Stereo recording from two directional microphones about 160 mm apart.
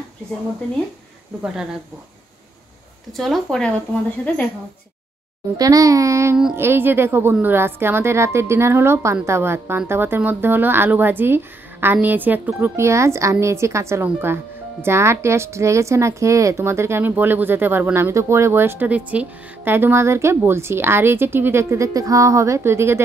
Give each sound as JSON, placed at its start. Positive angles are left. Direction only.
{"t": 3.2, "sound": "speech", "side_deg": 0}
{"t": 5.6, "sound": "a child's voice", "side_deg": -20}